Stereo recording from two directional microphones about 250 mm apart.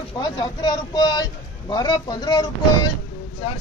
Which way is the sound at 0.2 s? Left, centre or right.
Centre.